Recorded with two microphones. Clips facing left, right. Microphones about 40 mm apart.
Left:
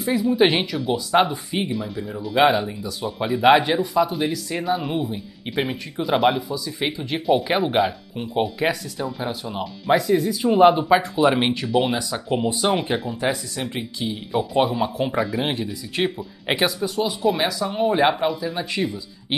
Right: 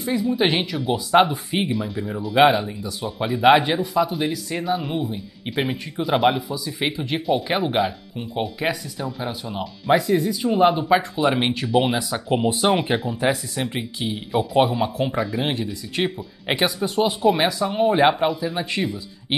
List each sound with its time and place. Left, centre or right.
0.0 s speech: centre
0.9 s speech: centre
2.6 s speech: centre
7.2 s speech: centre
10.5 s speech: centre
12.1 s speech: centre
15.0 s speech: centre
16.8 s speech: right